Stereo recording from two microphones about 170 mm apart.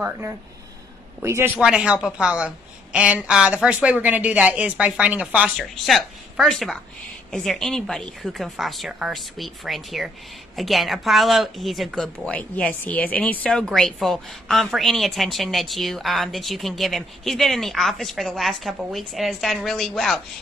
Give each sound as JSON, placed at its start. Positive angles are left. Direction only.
{"t": 1.2, "sound": "speech", "side_deg": -15}